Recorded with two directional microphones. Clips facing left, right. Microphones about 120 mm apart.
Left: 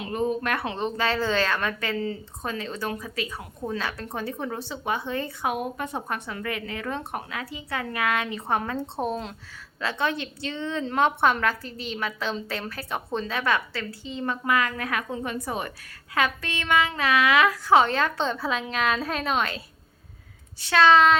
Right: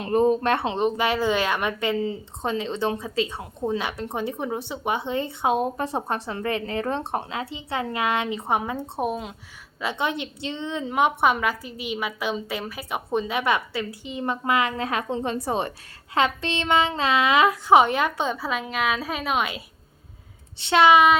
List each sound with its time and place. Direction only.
0.0 s a woman's voice: 40° right (ahead or behind); by 19.6 s 10° right (ahead or behind)
20.6 s a woman's voice: 20° right (ahead or behind)